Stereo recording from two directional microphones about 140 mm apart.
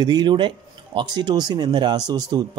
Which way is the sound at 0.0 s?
30° right (ahead or behind).